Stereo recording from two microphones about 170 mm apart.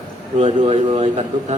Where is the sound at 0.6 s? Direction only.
30° right (ahead or behind).